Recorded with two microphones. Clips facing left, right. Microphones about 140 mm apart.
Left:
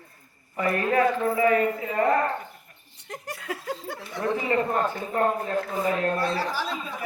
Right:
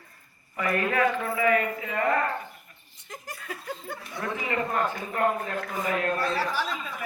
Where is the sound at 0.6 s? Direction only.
35° left (ahead or behind).